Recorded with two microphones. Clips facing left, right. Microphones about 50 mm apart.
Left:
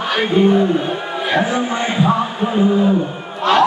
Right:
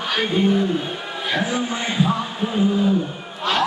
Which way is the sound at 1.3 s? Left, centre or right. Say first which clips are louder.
Left 5 dB; centre.